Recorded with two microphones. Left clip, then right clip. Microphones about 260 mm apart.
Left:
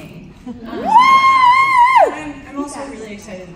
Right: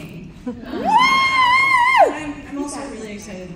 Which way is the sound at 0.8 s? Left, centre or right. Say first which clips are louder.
Left 5 dB; left.